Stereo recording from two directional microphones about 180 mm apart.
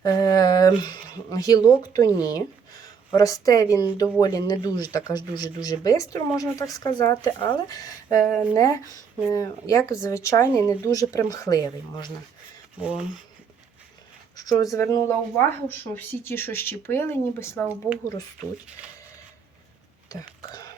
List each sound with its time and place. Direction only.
0.0 s speech: 20° left (ahead or behind)
12.8 s speech: 5° right (ahead or behind)
14.5 s speech: 15° left (ahead or behind)
20.1 s speech: 20° left (ahead or behind)